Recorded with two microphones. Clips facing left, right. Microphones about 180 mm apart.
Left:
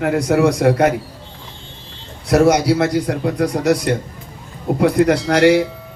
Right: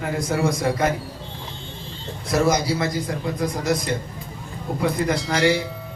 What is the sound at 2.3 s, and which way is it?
A man's voice, 70° left (ahead or behind).